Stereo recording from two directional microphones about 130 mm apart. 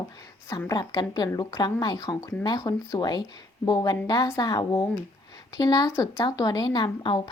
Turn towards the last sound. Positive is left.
turn(degrees=40)  # may be behind; listen again after turning